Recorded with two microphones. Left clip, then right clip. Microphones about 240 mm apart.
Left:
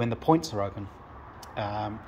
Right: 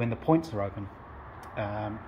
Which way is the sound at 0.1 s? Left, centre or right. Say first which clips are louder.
Left 2 dB; centre.